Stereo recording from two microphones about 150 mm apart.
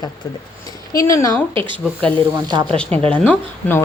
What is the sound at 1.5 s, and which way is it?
Speech, 35° right (ahead or behind).